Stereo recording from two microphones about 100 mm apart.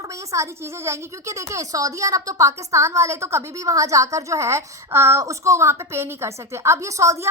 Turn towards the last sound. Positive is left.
turn(degrees=-30)  # may be behind; listen again after turning